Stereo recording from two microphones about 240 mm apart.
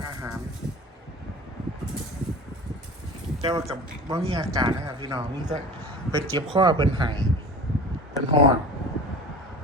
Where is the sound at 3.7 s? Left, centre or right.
Right.